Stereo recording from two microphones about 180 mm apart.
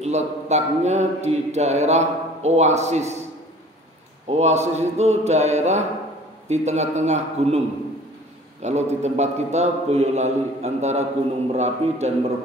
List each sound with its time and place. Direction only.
0.0 s a man's voice: 40° right (ahead or behind)
4.3 s a man's voice: 40° right (ahead or behind)
8.6 s a man's voice: 40° right (ahead or behind)